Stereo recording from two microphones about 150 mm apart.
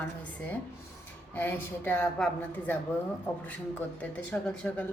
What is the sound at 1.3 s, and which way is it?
Speech, 15° left (ahead or behind).